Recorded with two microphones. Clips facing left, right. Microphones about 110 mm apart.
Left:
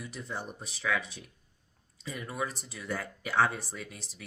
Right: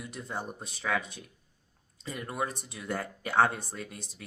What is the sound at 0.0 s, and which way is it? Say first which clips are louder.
Speech: right 1 dB; 45° right (ahead or behind).